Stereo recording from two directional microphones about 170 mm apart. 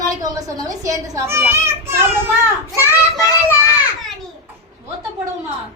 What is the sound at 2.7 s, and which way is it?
Child singing, 15° left (ahead or behind).